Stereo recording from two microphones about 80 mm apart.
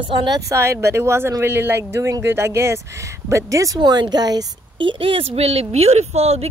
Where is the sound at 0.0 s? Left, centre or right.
Right.